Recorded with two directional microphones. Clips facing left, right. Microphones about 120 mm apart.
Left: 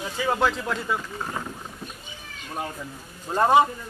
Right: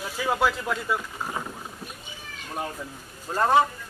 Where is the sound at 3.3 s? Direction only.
15° left (ahead or behind).